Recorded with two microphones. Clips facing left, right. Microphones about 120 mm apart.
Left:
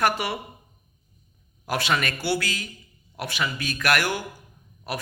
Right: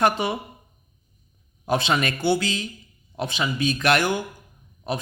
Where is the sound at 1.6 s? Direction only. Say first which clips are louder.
Right 3 dB; 25° right (ahead or behind).